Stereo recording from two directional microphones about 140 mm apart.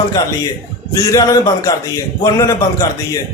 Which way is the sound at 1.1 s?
25° left (ahead or behind).